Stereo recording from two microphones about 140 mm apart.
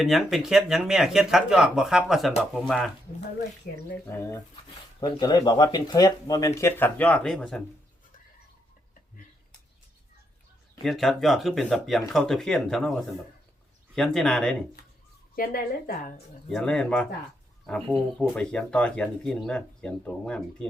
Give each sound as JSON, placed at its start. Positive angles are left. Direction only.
{"t": 0.0, "sound": "speech", "side_deg": 0}
{"t": 3.6, "sound": "a woman's voice", "side_deg": 90}
{"t": 4.9, "sound": "speech", "side_deg": 30}
{"t": 10.8, "sound": "speech", "side_deg": 0}
{"t": 15.4, "sound": "a woman's voice", "side_deg": 90}
{"t": 16.5, "sound": "speech", "side_deg": 5}